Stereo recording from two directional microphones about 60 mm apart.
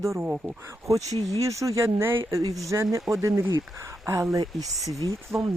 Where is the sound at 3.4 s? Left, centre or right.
Right.